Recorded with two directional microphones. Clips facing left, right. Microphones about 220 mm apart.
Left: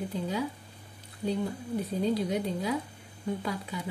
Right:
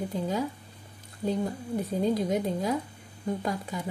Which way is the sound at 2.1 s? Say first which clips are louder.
Right 2 dB; 45° right (ahead or behind).